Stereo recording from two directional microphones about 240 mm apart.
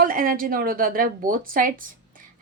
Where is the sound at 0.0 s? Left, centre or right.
Right.